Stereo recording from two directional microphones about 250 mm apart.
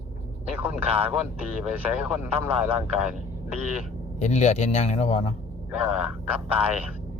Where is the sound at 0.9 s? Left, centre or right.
Right.